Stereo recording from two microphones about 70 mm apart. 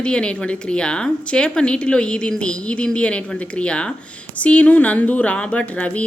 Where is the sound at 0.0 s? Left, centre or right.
Centre.